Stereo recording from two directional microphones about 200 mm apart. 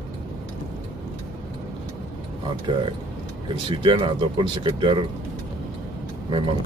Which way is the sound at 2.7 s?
25° right (ahead or behind).